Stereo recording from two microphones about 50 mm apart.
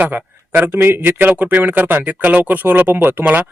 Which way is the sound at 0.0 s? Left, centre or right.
Right.